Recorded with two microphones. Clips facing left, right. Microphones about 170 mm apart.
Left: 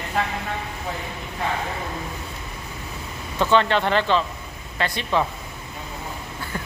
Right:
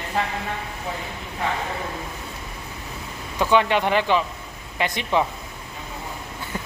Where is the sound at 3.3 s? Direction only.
10° right (ahead or behind).